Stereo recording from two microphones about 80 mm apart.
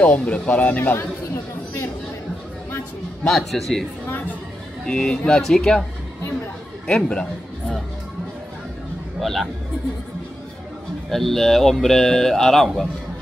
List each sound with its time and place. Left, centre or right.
0.0 s speech: centre
0.9 s chatter: left
3.3 s speech: centre
4.8 s speech: centre
6.9 s a man's voice: centre
9.2 s speech: centre
11.1 s speech: centre